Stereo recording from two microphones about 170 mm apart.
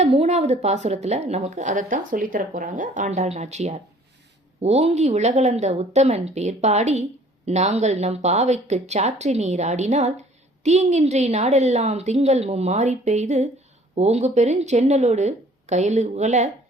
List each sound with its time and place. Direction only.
0.0 s a woman's voice: 40° right (ahead or behind)